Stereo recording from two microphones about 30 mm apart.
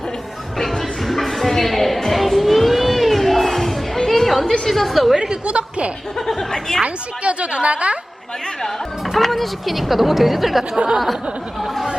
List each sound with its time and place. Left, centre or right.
1.0 s a sound: centre
4.7 s speech: centre
5.1 s a woman's voice: centre
5.5 s a woman's voice: right
9.1 s speech: centre